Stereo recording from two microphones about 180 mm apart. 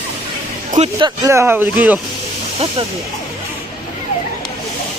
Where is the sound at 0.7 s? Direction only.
35° right (ahead or behind).